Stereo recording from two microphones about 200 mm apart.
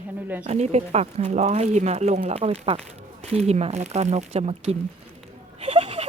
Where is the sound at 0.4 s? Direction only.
35° right (ahead or behind).